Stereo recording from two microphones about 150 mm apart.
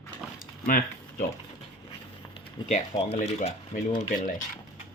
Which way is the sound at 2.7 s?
45° left (ahead or behind).